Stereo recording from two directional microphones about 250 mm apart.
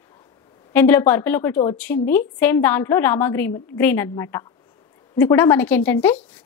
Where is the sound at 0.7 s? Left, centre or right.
Centre.